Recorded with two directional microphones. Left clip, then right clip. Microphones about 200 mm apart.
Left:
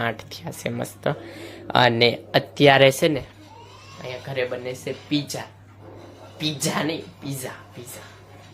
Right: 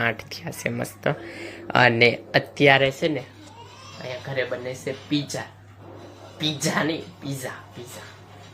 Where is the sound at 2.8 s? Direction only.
45° left (ahead or behind).